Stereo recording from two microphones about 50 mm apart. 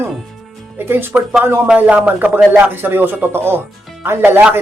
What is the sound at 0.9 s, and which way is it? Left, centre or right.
Speech, right.